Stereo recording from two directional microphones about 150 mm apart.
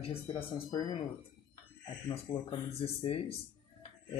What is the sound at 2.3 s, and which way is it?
A man's voice, 35° left (ahead or behind).